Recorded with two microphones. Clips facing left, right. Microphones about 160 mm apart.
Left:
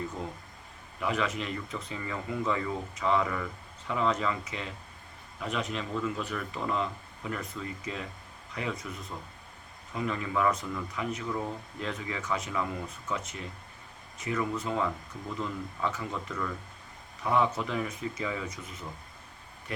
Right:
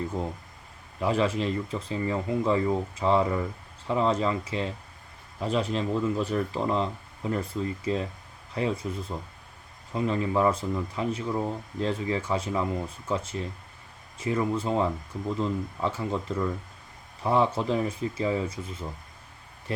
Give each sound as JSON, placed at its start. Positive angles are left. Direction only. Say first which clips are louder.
{"t": 0.9, "sound": "speech", "louder": "right 6 dB", "side_deg": -30}